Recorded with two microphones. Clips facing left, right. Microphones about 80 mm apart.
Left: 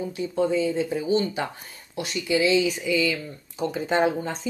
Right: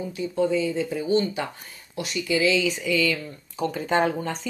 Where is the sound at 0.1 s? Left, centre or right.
Left.